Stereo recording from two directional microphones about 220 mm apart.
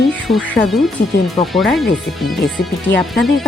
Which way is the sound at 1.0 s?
45° left (ahead or behind).